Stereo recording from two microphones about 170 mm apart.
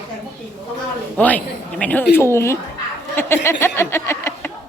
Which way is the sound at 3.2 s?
15° left (ahead or behind).